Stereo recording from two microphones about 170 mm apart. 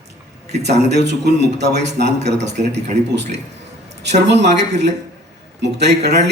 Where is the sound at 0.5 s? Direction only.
40° right (ahead or behind).